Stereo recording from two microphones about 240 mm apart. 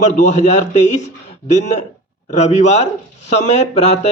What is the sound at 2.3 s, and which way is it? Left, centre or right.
A man's voice, left.